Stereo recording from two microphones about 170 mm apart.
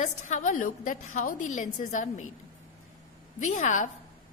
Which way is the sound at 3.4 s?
45° left (ahead or behind).